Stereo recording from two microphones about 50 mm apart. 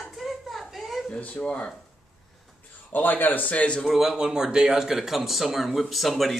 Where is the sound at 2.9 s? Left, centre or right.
Left.